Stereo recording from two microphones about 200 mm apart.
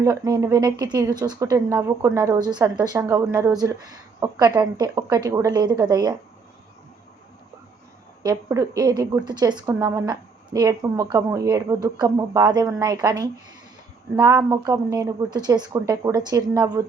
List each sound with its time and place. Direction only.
0.0 s a woman's voice: 15° right (ahead or behind)
8.2 s a woman's voice: 15° right (ahead or behind)